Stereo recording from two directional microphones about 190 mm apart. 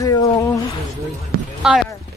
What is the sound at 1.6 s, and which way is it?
Speech, 5° right (ahead or behind).